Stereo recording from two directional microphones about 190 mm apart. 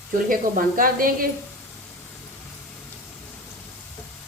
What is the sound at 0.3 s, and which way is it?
Speech, 50° right (ahead or behind).